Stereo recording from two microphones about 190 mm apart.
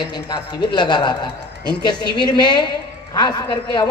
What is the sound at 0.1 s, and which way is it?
A man's voice, 20° left (ahead or behind).